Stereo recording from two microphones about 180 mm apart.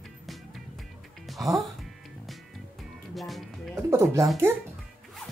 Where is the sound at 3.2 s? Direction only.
Centre (ahead or behind).